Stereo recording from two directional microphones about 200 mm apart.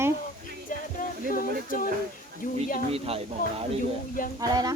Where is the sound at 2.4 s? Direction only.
45° left (ahead or behind).